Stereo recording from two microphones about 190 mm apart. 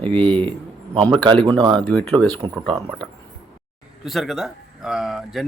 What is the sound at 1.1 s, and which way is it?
Speech, 25° right (ahead or behind).